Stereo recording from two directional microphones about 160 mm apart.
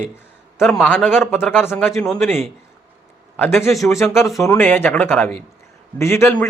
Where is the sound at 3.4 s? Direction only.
15° left (ahead or behind).